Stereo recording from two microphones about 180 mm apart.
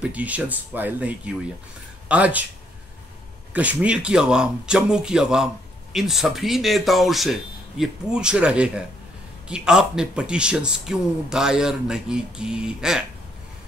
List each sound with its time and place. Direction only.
0.0 s speech: 10° right (ahead or behind)
3.5 s speech: 5° right (ahead or behind)